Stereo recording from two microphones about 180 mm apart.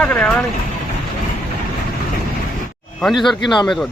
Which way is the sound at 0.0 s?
5° left (ahead or behind).